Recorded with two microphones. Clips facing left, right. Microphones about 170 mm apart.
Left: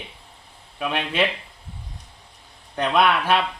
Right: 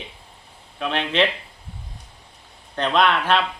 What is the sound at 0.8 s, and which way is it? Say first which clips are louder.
Speech: right 2 dB; 10° left (ahead or behind).